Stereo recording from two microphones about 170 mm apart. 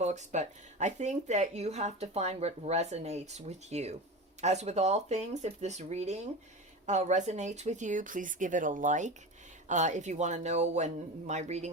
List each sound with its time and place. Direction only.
0.0 s speech: 45° right (ahead or behind)